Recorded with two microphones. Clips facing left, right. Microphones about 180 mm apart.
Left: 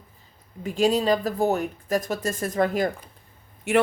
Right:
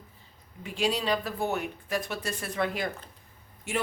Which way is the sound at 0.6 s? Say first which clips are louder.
Left 8 dB; 45° left (ahead or behind).